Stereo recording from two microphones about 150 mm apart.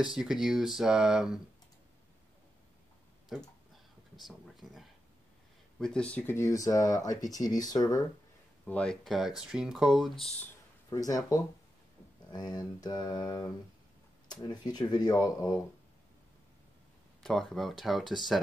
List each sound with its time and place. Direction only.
0.0 s speech: 5° right (ahead or behind)
3.3 s a sound: centre (ahead or behind)
5.8 s speech: 5° left (ahead or behind); by 8.0 s 25° left (ahead or behind)
8.6 s speech: 5° left (ahead or behind)
10.9 s speech: 25° left (ahead or behind)
17.2 s speech: 5° left (ahead or behind)